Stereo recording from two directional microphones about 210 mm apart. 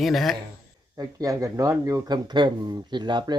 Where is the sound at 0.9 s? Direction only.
15° right (ahead or behind).